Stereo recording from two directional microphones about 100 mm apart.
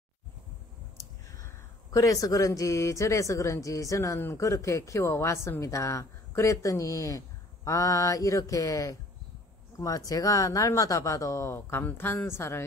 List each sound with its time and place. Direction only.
1.4 s speech: 35° left (ahead or behind)